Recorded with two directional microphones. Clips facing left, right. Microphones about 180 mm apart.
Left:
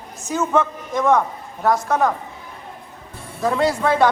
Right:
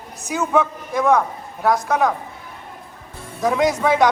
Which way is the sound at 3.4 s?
15° right (ahead or behind).